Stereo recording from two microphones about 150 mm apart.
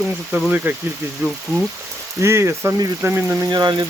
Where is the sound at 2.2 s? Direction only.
20° right (ahead or behind).